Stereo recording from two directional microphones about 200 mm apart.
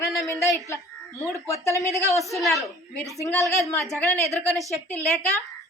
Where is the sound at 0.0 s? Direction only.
15° left (ahead or behind).